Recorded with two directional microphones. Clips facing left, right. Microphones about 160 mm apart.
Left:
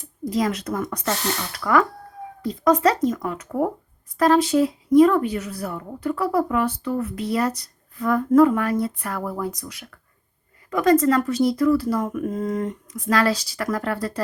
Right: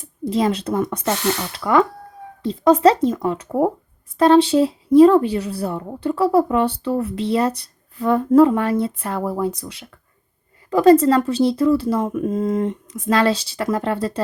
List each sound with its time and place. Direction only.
0.3 s speech: 25° right (ahead or behind)